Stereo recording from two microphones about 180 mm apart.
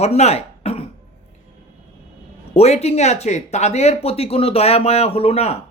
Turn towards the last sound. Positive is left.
turn(degrees=35)  # may be behind; listen again after turning